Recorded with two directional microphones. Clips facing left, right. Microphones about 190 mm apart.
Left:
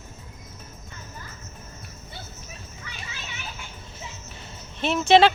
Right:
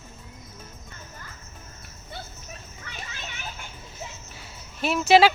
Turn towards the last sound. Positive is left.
turn(degrees=-5)  # may be behind; listen again after turning